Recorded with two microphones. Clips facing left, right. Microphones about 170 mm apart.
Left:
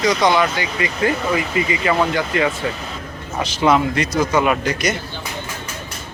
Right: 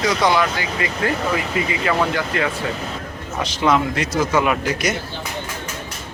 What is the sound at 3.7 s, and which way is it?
Speech, 5° right (ahead or behind).